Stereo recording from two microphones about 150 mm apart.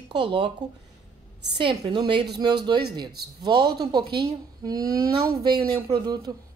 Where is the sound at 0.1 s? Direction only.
35° right (ahead or behind).